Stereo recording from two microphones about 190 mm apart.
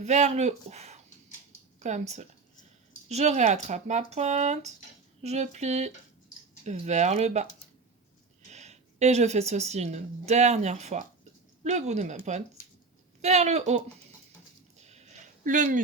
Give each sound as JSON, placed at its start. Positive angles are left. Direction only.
{"t": 0.0, "sound": "speech", "side_deg": -35}
{"t": 8.4, "sound": "speech", "side_deg": -35}
{"t": 15.4, "sound": "speech", "side_deg": -45}